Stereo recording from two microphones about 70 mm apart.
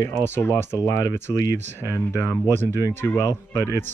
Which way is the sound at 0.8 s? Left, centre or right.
Left.